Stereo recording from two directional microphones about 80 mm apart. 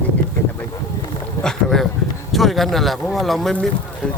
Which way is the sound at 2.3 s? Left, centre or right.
Centre.